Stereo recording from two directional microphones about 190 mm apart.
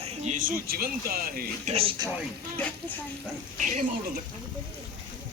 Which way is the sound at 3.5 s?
40° right (ahead or behind).